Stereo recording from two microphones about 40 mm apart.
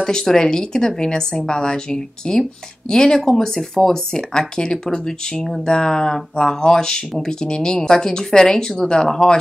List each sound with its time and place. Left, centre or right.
0.0 s speech: centre